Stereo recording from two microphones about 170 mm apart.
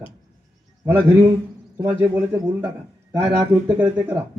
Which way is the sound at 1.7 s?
15° right (ahead or behind).